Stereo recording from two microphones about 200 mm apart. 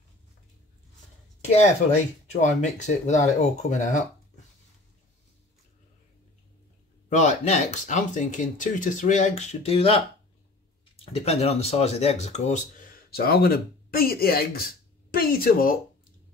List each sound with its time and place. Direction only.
1.6 s speech: 35° left (ahead or behind)
7.1 s speech: 35° left (ahead or behind)
13.1 s speech: 50° left (ahead or behind)